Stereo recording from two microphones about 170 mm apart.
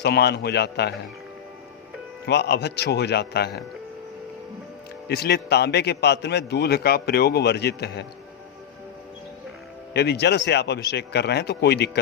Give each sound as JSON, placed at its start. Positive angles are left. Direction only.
{"t": 0.0, "sound": "a man's voice", "side_deg": 75}
{"t": 2.2, "sound": "a man's voice", "side_deg": 75}
{"t": 5.0, "sound": "a man's voice", "side_deg": 70}
{"t": 9.9, "sound": "a man's voice", "side_deg": 75}